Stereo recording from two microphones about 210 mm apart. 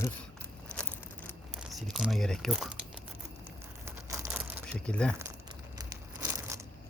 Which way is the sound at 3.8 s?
10° right (ahead or behind).